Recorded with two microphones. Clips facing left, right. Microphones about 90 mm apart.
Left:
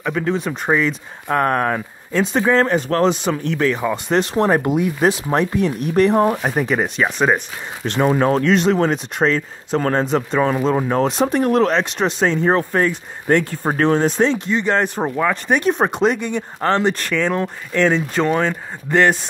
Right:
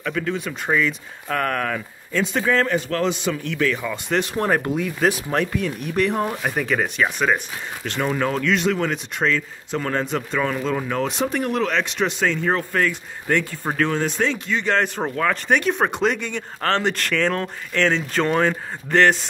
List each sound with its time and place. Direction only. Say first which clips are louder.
0.0 s speech: left 4 dB; 25° left (ahead or behind); by 18.6 s centre (ahead or behind)
18.9 s speech: left 1 dB; 10° left (ahead or behind)